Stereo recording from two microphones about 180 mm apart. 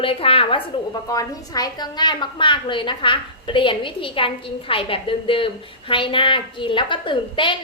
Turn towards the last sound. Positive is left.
turn(degrees=30)  # may be behind; listen again after turning